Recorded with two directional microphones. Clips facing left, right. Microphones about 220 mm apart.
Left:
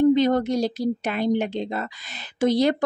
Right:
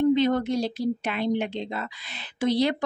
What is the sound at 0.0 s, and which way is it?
Speech, 40° left (ahead or behind).